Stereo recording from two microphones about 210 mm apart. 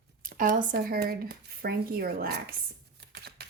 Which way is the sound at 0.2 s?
40° right (ahead or behind).